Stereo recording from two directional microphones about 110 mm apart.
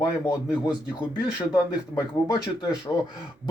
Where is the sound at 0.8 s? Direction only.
45° left (ahead or behind).